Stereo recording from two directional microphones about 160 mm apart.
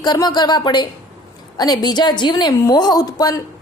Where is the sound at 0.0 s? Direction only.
25° left (ahead or behind).